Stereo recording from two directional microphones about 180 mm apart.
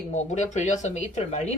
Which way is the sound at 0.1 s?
40° left (ahead or behind).